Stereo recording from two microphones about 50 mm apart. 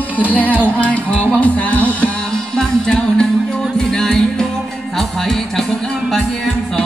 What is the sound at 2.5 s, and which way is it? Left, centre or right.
Music, centre.